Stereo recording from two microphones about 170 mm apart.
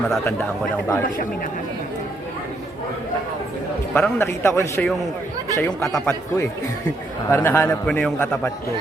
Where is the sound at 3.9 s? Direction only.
15° left (ahead or behind).